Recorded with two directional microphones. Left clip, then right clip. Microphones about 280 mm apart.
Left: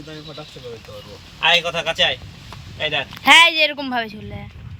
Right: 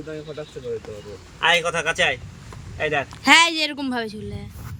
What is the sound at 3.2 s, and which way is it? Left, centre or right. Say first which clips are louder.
Speech: left 4 dB; centre.